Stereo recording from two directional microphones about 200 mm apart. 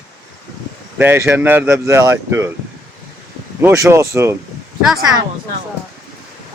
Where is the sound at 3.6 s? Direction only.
15° right (ahead or behind).